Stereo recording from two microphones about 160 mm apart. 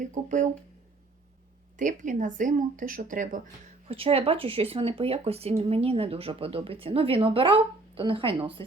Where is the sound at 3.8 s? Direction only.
35° right (ahead or behind).